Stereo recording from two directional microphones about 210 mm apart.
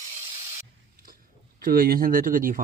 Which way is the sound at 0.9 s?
45° right (ahead or behind).